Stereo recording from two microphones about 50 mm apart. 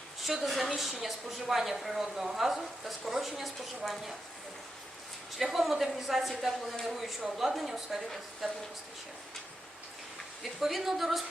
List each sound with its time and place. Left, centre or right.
0.4 s speech: centre
5.4 s a woman's voice: centre
10.4 s speech: centre